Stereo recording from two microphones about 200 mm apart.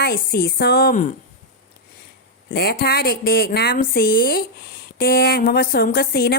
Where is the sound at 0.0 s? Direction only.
45° left (ahead or behind).